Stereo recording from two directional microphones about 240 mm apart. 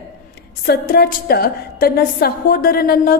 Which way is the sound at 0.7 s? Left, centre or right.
Left.